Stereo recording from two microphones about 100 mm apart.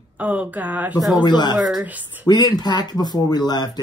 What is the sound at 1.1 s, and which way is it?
Speech, 45° left (ahead or behind).